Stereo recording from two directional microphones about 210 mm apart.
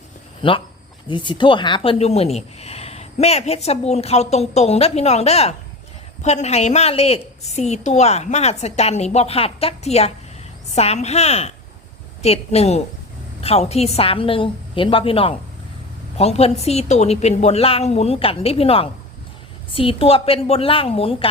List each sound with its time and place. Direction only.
0.4 s a woman's voice: 25° left (ahead or behind)